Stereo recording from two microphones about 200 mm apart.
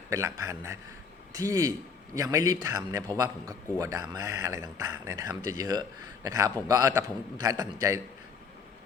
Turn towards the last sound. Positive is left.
turn(degrees=-15)  # may be behind; listen again after turning